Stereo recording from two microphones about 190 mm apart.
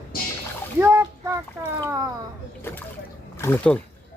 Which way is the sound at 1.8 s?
15° right (ahead or behind).